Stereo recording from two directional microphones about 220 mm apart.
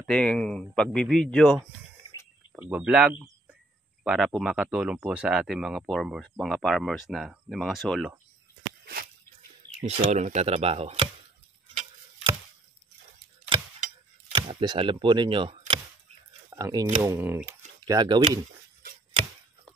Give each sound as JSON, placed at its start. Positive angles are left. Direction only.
{"t": 0.0, "sound": "speech", "side_deg": 5}
{"t": 9.8, "sound": "speech", "side_deg": -30}
{"t": 11.7, "sound": "tick-tock", "side_deg": -30}
{"t": 14.3, "sound": "a sound", "side_deg": -20}
{"t": 16.4, "sound": "speech", "side_deg": -15}